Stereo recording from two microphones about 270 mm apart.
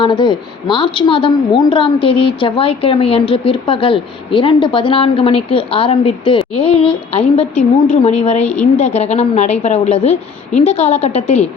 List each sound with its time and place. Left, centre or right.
0.0 s a woman's voice: centre